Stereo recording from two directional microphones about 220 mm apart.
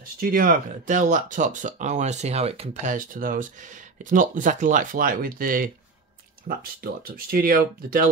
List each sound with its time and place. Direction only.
0.2 s speech: 40° right (ahead or behind)